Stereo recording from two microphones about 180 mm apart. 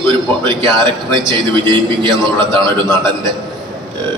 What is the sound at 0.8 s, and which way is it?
A man's voice, 25° right (ahead or behind).